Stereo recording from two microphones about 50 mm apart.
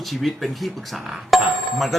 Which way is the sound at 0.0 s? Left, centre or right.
Centre.